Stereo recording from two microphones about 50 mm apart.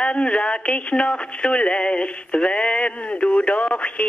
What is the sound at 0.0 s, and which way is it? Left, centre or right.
Speech, left.